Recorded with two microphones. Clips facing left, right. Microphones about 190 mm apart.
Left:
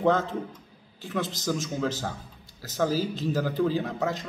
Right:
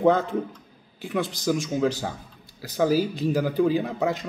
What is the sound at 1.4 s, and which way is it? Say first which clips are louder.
A man's voice: right 7 dB; 15° right (ahead or behind).